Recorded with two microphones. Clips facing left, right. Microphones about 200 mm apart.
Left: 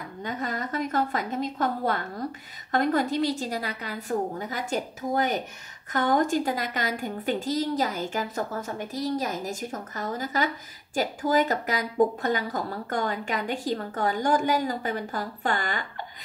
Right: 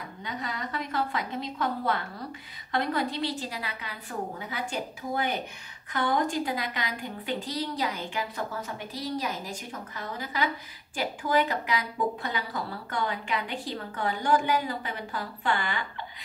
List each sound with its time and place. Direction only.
0.2 s a woman's voice: 45° left (ahead or behind)